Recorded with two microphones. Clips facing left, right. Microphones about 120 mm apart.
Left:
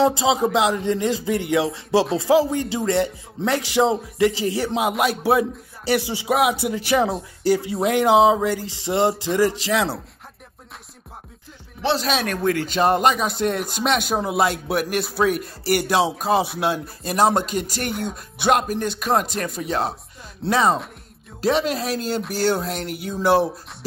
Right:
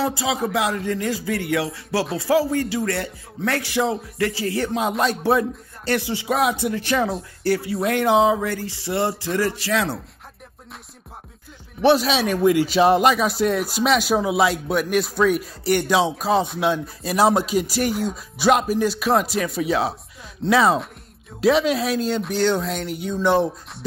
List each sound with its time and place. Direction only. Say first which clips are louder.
0.0 s music: left 5 dB; 20° left (ahead or behind)
2.1 s speech: left 2 dB; 20° left (ahead or behind)
7.7 s music: left 2 dB; 20° left (ahead or behind)
9.3 s speech: left 2 dB; 20° left (ahead or behind)
12.0 s speech: right 3 dB; centre (ahead or behind)